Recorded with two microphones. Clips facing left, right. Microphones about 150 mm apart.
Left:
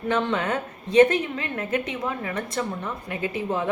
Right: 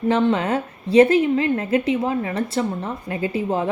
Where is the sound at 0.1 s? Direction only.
30° right (ahead or behind).